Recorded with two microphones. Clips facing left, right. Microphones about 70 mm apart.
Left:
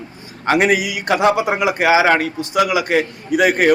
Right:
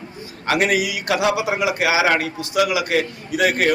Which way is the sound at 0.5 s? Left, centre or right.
Centre.